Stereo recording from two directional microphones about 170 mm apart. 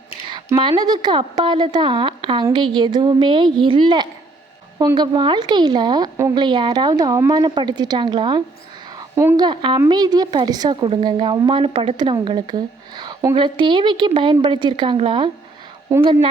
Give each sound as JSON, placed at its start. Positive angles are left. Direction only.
{"t": 0.3, "sound": "a woman's voice", "side_deg": -25}